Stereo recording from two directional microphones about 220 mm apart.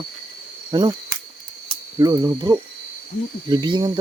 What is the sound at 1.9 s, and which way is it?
Cricket, 15° right (ahead or behind).